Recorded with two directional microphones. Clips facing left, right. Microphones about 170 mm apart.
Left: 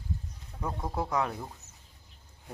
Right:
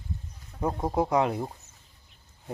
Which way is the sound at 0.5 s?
35° right (ahead or behind).